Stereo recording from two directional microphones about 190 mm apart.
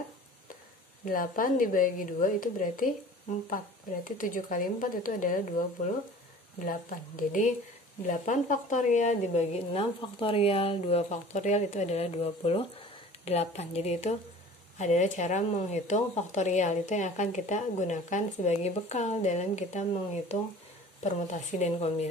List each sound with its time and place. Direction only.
1.0 s speech: 45° left (ahead or behind)
6.6 s speech: 45° left (ahead or behind)